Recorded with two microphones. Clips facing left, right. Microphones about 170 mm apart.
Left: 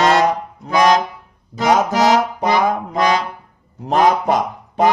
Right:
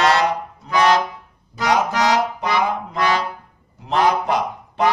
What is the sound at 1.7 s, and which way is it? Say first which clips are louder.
Speech: left 3 dB; 45° left (ahead or behind).